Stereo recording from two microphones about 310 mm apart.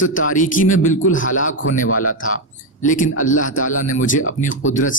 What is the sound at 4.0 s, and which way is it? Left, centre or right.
Speech, left.